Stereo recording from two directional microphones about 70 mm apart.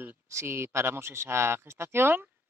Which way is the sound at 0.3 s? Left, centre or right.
Right.